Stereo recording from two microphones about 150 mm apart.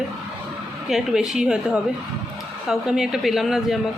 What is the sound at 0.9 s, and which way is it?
A woman's voice, centre (ahead or behind).